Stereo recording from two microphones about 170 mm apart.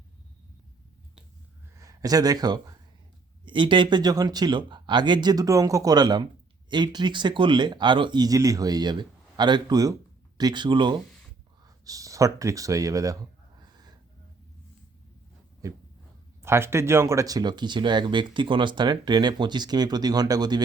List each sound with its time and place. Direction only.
1.7 s a man's voice: 20° right (ahead or behind)
15.6 s speech: 20° right (ahead or behind)